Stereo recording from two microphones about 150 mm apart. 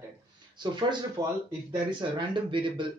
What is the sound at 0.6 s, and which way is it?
Speech, 30° right (ahead or behind).